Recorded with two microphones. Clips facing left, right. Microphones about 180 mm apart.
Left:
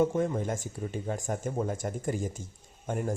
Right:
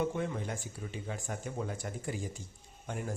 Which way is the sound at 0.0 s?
45° left (ahead or behind).